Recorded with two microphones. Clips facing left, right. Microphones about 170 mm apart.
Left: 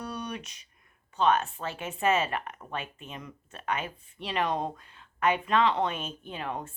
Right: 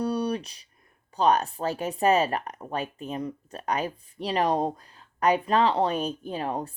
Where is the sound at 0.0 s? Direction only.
35° right (ahead or behind).